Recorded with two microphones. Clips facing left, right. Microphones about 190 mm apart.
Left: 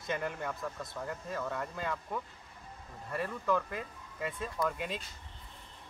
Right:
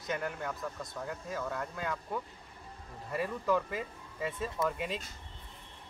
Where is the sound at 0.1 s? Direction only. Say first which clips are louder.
Even; centre (ahead or behind).